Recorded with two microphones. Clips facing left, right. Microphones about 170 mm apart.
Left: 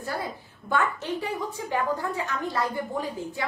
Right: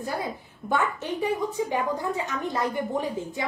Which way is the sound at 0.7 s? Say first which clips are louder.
Even; 15° right (ahead or behind).